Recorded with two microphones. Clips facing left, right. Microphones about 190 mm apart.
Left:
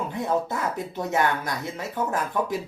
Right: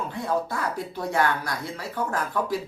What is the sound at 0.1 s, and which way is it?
Speech, 20° left (ahead or behind).